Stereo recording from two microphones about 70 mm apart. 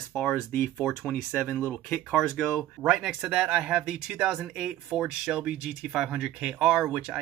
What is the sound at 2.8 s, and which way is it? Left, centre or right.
Speech, centre.